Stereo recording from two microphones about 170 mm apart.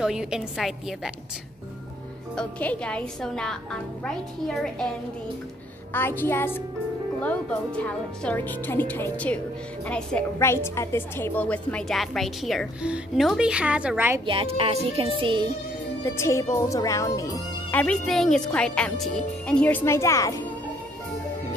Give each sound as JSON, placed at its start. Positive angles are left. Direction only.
{"t": 0.0, "sound": "a woman's voice", "side_deg": -5}
{"t": 2.3, "sound": "a woman's voice", "side_deg": 5}
{"t": 5.9, "sound": "a woman's voice", "side_deg": 10}
{"t": 14.2, "sound": "speech", "side_deg": -30}
{"t": 16.0, "sound": "speech", "side_deg": 15}
{"t": 17.6, "sound": "speech", "side_deg": 10}